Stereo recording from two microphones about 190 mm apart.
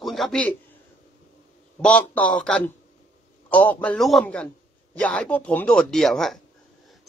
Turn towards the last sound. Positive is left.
turn(degrees=0)  # may be behind; listen again after turning